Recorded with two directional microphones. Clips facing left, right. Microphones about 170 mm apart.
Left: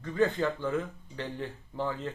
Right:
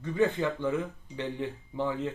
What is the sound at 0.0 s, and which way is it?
Speech, 15° right (ahead or behind).